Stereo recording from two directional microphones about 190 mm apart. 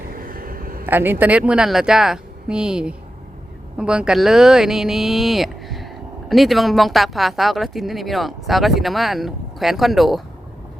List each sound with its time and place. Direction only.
0.1 s vehicle: 50° right (ahead or behind)
0.9 s speech: 10° right (ahead or behind)